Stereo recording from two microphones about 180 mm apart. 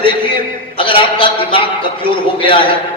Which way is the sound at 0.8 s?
30° left (ahead or behind).